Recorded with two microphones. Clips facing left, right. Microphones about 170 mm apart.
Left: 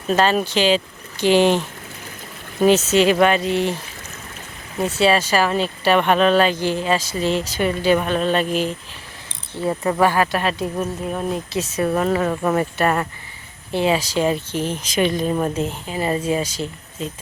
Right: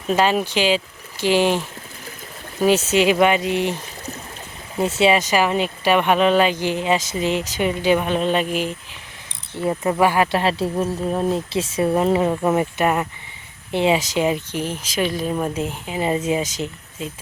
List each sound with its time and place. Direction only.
0.2 s speech: 10° right (ahead or behind)
2.6 s speech: 15° right (ahead or behind)
4.8 s speech: 25° right (ahead or behind)
10.0 s speech: 15° right (ahead or behind)
10.3 s speech: 25° right (ahead or behind); by 15.5 s centre (ahead or behind)
15.5 s speech: 15° right (ahead or behind)